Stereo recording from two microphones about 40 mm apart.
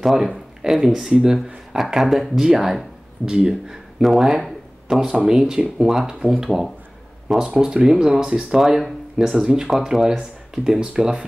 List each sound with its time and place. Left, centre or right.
0.0 s speech: centre
4.0 s speech: centre
5.0 s speech: right